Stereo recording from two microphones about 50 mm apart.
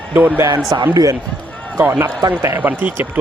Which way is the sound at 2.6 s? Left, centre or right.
Right.